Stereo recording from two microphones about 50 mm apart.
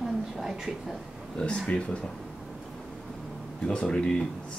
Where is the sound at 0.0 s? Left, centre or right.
Centre.